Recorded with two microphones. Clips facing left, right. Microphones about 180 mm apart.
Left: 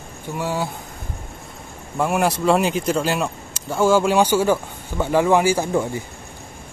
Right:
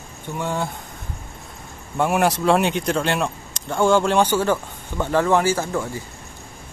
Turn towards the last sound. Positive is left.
turn(degrees=20)  # may be behind; listen again after turning